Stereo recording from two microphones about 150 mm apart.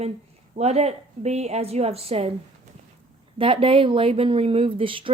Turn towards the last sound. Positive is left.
turn(degrees=-35)  # may be behind; listen again after turning